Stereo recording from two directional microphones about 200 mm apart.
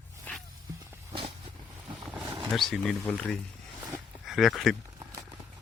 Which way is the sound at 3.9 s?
5° right (ahead or behind).